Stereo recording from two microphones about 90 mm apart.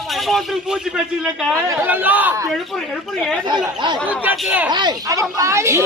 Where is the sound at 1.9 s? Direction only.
20° right (ahead or behind).